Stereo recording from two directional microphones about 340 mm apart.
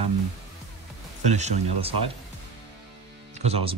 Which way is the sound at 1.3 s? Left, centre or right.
Centre.